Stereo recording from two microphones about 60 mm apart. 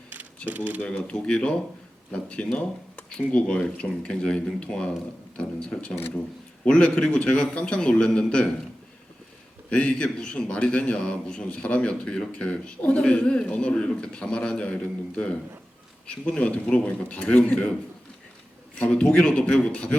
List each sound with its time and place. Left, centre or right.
0.4 s speech: right
0.8 s speech: centre
9.6 s speech: centre
17.5 s speech: centre
18.8 s speech: centre